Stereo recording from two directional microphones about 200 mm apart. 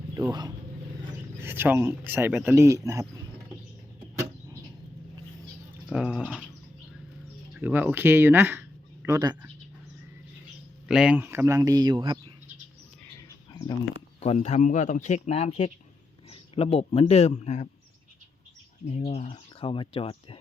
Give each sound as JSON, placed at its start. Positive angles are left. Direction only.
{"t": 0.1, "sound": "speech", "side_deg": -15}
{"t": 5.9, "sound": "bird", "side_deg": -5}
{"t": 7.6, "sound": "speech", "side_deg": -10}
{"t": 10.8, "sound": "speech", "side_deg": -5}
{"t": 13.5, "sound": "bird", "side_deg": 20}
{"t": 14.2, "sound": "a man's voice", "side_deg": 35}
{"t": 18.9, "sound": "speech", "side_deg": 35}